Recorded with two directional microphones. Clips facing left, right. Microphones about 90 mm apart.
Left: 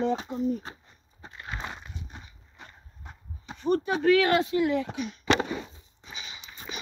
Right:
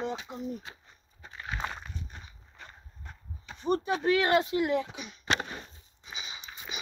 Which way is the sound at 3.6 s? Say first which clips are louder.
Left 3 dB; 20° right (ahead or behind).